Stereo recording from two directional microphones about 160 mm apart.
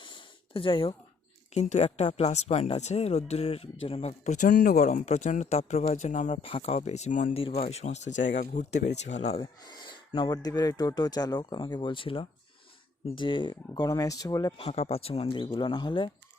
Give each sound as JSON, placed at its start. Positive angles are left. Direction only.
{"t": 0.0, "sound": "a sound", "side_deg": 30}
{"t": 1.6, "sound": "speech", "side_deg": 45}
{"t": 4.5, "sound": "speech", "side_deg": 65}
{"t": 6.4, "sound": "speech", "side_deg": 40}
{"t": 7.3, "sound": "speech", "side_deg": 35}
{"t": 9.6, "sound": "speech", "side_deg": 25}
{"t": 14.6, "sound": "speech", "side_deg": 40}